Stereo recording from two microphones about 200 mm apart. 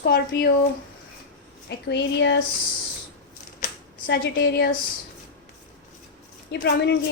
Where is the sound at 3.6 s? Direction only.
55° left (ahead or behind).